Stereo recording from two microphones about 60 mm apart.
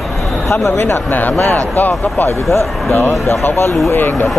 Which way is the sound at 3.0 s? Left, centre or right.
Left.